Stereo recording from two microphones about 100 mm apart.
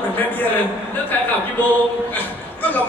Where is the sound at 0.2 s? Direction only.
20° left (ahead or behind).